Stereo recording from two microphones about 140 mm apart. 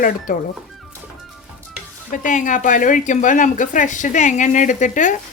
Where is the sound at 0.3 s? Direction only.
75° left (ahead or behind).